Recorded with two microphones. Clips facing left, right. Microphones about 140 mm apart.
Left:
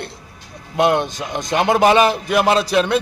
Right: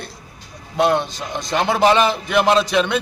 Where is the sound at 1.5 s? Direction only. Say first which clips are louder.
Left 2 dB; 15° left (ahead or behind).